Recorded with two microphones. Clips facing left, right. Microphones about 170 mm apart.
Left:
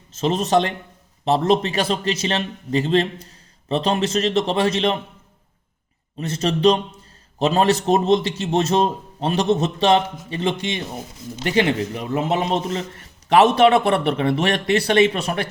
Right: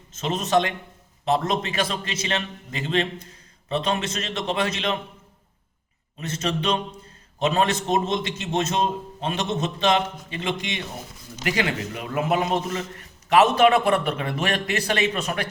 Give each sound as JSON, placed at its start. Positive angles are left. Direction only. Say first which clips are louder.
{"t": 0.2, "sound": "a man's voice", "louder": "left 4 dB", "side_deg": 30}
{"t": 6.1, "sound": "a man's voice", "louder": "left 4 dB", "side_deg": 35}